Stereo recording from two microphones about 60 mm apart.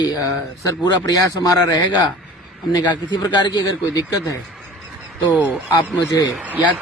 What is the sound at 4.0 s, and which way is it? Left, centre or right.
Speech, left.